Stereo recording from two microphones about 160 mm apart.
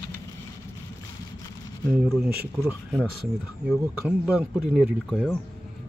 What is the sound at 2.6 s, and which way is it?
Speech, 5° left (ahead or behind).